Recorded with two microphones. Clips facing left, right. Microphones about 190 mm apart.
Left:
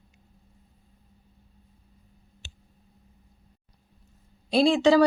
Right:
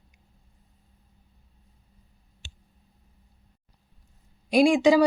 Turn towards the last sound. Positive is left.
turn(degrees=-10)  # may be behind; listen again after turning